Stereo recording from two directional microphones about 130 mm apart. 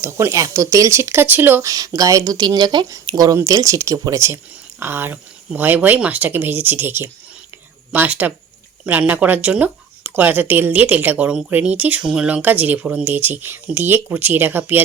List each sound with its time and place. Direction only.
0.0 s speech: 20° right (ahead or behind)
2.0 s speech: 25° right (ahead or behind)